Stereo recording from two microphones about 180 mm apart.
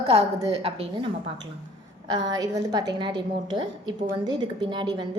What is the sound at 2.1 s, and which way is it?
A woman's voice, 25° right (ahead or behind).